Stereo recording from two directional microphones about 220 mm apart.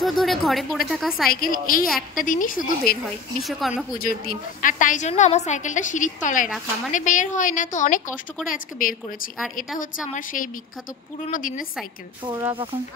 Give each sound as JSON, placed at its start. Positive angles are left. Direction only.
{"t": 0.0, "sound": "speech", "side_deg": 0}
{"t": 1.3, "sound": "a woman's voice", "side_deg": 40}
{"t": 3.4, "sound": "speech", "side_deg": 0}
{"t": 4.0, "sound": "a woman's voice", "side_deg": 40}
{"t": 12.3, "sound": "speech", "side_deg": -15}